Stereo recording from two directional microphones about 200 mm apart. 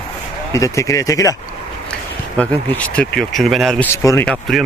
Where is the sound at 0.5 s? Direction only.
15° left (ahead or behind).